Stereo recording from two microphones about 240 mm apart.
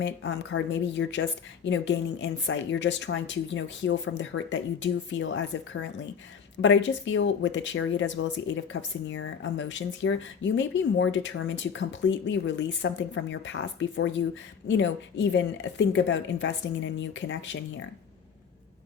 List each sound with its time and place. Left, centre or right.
0.0 s speech: left